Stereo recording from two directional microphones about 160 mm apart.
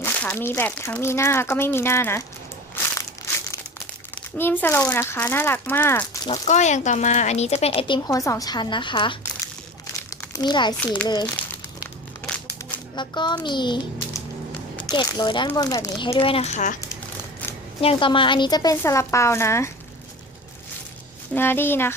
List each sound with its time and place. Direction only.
0.0 s speech: 10° left (ahead or behind)
3.0 s crumpling: 20° left (ahead or behind)
4.4 s speech: 15° left (ahead or behind)
6.3 s a woman's voice: 45° left (ahead or behind); by 11.3 s 25° left (ahead or behind)
13.0 s a woman's voice: 30° left (ahead or behind)
16.1 s a child's voice: 35° left (ahead or behind)
17.7 s a woman's voice: 35° left (ahead or behind); by 19.7 s 15° left (ahead or behind)
21.3 s speech: 15° left (ahead or behind)